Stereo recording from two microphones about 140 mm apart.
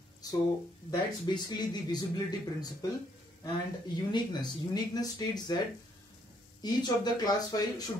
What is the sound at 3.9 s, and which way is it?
Speech, 30° left (ahead or behind).